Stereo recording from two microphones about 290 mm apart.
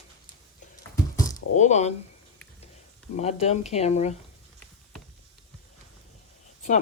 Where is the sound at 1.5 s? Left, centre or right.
Left.